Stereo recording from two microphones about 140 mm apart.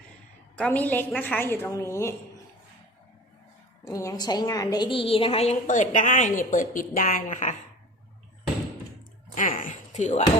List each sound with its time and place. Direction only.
0.5 s a woman's voice: 10° left (ahead or behind)
3.8 s a woman's voice: 20° left (ahead or behind); by 5.5 s 45° left (ahead or behind)
5.6 s speech: 65° left (ahead or behind)
9.3 s speech: 70° left (ahead or behind)